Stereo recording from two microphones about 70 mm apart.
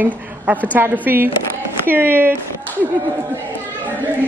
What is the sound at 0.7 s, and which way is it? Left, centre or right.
Speech, right.